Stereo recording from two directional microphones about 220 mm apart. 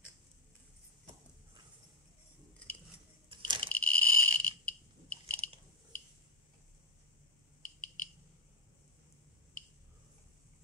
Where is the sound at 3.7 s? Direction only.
5° left (ahead or behind).